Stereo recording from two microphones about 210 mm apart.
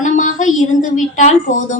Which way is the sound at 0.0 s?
35° left (ahead or behind).